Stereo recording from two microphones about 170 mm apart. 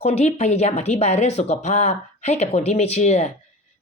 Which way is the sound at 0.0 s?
40° left (ahead or behind).